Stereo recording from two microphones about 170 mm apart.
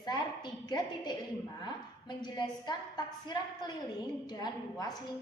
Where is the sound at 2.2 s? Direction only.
25° left (ahead or behind).